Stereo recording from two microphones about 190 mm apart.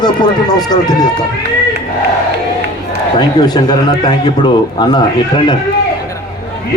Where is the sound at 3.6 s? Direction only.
20° left (ahead or behind).